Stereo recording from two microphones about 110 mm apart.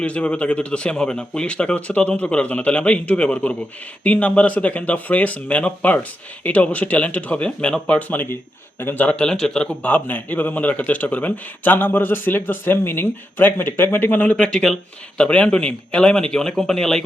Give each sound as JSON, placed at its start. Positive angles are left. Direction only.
{"t": 0.0, "sound": "a man's voice", "side_deg": 10}